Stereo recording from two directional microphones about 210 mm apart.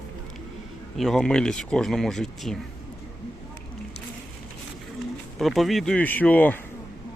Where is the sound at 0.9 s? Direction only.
Centre (ahead or behind).